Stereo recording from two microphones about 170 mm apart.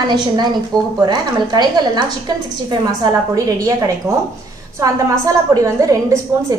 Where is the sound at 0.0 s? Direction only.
25° right (ahead or behind).